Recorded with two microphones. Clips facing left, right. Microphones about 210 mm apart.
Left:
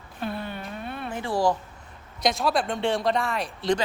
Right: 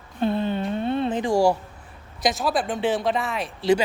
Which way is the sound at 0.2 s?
25° right (ahead or behind).